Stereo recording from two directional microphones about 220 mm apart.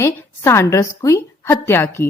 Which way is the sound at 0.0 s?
10° left (ahead or behind).